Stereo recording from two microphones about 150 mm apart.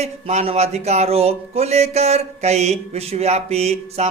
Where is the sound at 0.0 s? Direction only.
45° right (ahead or behind).